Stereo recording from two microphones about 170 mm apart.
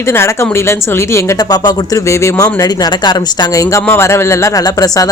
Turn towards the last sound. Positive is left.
turn(degrees=20)  # may be behind; listen again after turning